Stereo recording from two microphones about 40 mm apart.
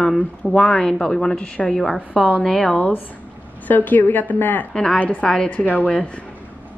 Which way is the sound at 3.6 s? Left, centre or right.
Left.